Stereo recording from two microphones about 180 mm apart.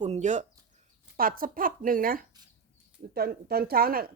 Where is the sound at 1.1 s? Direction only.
50° right (ahead or behind).